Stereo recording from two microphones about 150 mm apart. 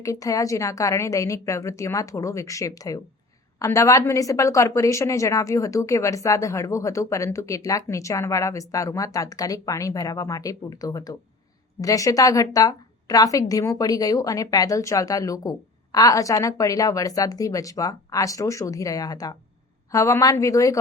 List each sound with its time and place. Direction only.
0.0 s a woman's voice: 20° left (ahead or behind)